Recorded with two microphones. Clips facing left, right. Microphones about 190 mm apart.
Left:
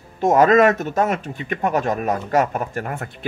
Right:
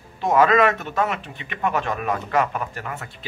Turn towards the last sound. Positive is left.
turn(degrees=50)  # may be behind; listen again after turning